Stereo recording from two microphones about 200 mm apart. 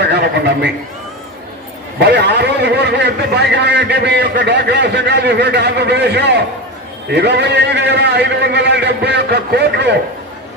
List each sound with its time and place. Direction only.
0.0 s horse: 55° right (ahead or behind)
2.0 s a man's voice: 55° right (ahead or behind)